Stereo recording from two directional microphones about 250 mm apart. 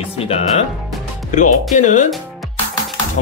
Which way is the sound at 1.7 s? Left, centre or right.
Left.